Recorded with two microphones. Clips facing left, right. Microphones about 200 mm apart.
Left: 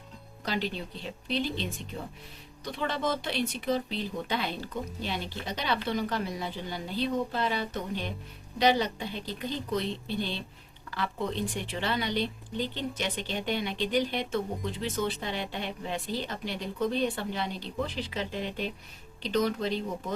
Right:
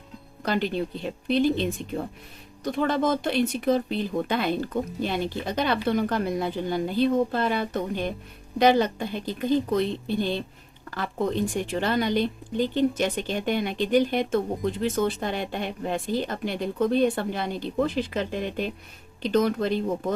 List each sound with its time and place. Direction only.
0.4 s a woman's voice: 50° right (ahead or behind)
2.6 s a woman's voice: 50° right (ahead or behind)